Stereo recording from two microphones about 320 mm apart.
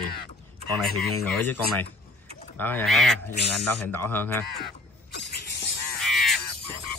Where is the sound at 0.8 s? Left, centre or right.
Centre.